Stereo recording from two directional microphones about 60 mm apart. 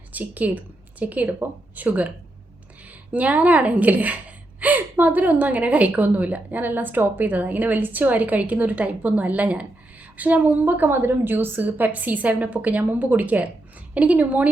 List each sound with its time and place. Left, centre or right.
0.1 s a woman's voice: right